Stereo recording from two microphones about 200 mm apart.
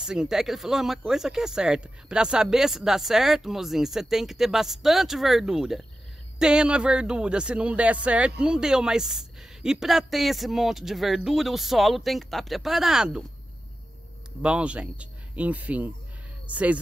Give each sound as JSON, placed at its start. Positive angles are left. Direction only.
{"t": 0.0, "sound": "speech", "side_deg": -5}
{"t": 14.4, "sound": "speech", "side_deg": -5}